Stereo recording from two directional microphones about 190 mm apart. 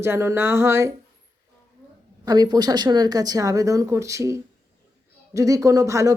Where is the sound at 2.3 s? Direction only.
20° right (ahead or behind).